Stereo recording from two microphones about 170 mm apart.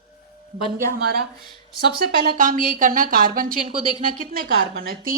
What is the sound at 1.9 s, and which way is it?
A woman's voice, 55° right (ahead or behind).